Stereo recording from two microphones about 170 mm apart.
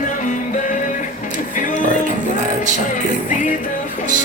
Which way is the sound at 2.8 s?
50° left (ahead or behind).